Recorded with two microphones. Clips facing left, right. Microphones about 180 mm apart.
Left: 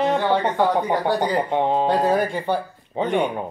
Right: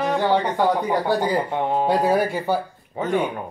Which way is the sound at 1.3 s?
20° left (ahead or behind).